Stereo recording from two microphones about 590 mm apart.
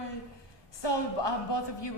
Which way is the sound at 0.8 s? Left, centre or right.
Left.